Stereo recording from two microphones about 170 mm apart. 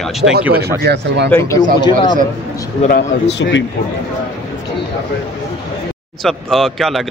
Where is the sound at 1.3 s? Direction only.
15° left (ahead or behind).